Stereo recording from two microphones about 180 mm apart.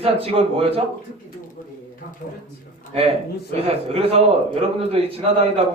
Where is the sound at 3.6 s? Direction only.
35° right (ahead or behind).